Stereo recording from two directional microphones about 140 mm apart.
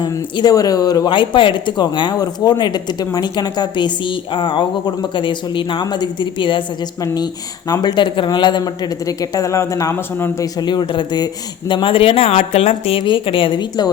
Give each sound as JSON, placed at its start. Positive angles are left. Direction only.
{"t": 0.0, "sound": "speech", "side_deg": 30}
{"t": 10.6, "sound": "speech", "side_deg": 30}